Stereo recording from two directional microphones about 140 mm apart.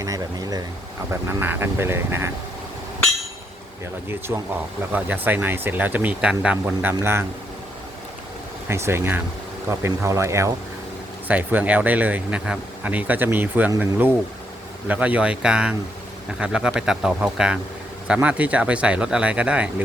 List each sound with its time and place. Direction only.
0.0 s a sound: 25° right (ahead or behind)
1.1 s speech: 15° right (ahead or behind)
4.3 s speech: 25° right (ahead or behind)
4.9 s speech: 10° right (ahead or behind)
8.6 s speech: 20° right (ahead or behind)